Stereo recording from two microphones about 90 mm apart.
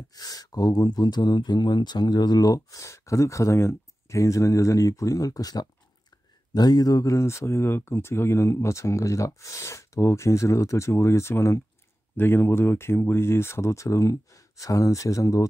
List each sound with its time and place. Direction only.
0.1 s speech: 45° left (ahead or behind)